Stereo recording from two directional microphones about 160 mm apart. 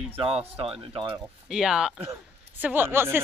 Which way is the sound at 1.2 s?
5° right (ahead or behind).